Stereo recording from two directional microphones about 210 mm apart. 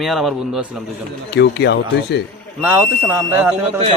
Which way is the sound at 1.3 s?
50° left (ahead or behind).